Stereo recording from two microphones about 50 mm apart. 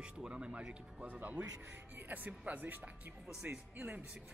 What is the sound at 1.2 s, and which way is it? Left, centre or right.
Speech, right.